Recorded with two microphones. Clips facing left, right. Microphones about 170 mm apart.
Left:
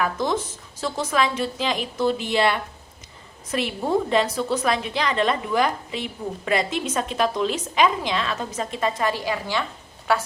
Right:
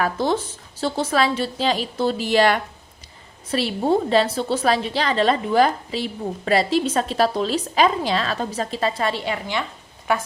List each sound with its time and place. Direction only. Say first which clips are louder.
0.0 s a woman's voice: right 2 dB; 30° right (ahead or behind)